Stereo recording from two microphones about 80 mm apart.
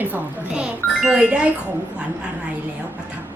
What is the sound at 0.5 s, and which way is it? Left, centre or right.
Speech, centre.